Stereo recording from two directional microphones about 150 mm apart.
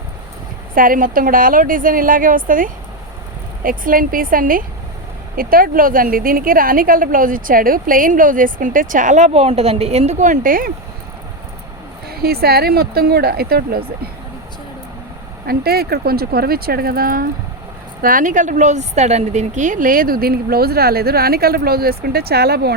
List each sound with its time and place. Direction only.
0.8 s a woman's voice: 70° right (ahead or behind)
12.0 s a woman's voice: 90° right
15.4 s a woman's voice: 90° right
18.0 s a woman's voice: 65° right (ahead or behind); by 22.7 s 90° right